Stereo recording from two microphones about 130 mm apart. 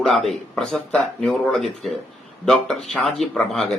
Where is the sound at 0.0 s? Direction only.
Centre (ahead or behind).